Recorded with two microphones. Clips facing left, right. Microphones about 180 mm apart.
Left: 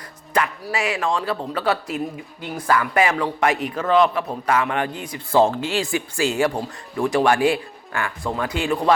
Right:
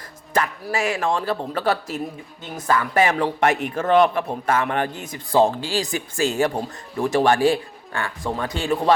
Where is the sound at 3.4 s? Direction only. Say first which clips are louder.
Even; 45° right (ahead or behind).